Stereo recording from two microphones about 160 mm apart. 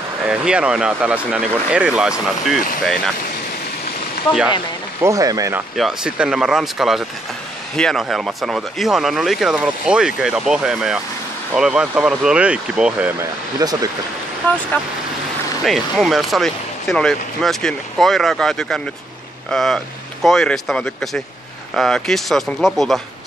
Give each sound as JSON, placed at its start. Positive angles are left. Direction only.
{"t": 0.3, "sound": "speech", "side_deg": -5}
{"t": 5.0, "sound": "speech", "side_deg": -20}
{"t": 5.8, "sound": "speech", "side_deg": -5}
{"t": 13.6, "sound": "speech", "side_deg": -25}
{"t": 14.4, "sound": "speech", "side_deg": 10}
{"t": 15.6, "sound": "speech", "side_deg": 0}